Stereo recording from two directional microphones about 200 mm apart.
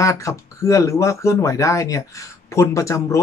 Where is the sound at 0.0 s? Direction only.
15° left (ahead or behind).